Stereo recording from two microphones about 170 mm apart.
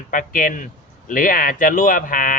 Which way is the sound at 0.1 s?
55° left (ahead or behind).